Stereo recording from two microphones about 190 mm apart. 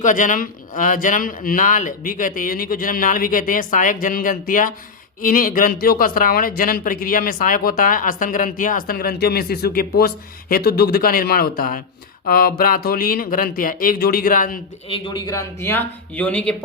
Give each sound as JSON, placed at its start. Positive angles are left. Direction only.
{"t": 0.0, "sound": "speech", "side_deg": 45}
{"t": 14.8, "sound": "speech", "side_deg": 25}